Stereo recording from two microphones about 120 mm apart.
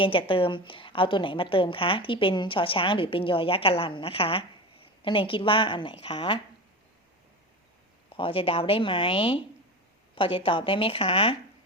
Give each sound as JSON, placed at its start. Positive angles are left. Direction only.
{"t": 0.0, "sound": "a woman's voice", "side_deg": 45}
{"t": 8.1, "sound": "a woman's voice", "side_deg": 50}